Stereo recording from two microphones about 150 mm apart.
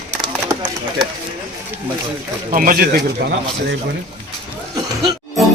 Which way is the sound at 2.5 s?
70° right (ahead or behind).